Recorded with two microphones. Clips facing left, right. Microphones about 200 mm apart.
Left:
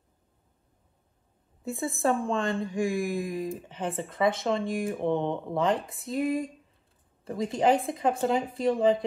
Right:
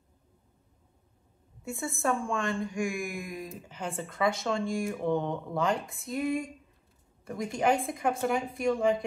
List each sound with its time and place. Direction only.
1.6 s a woman's voice: 30° left (ahead or behind)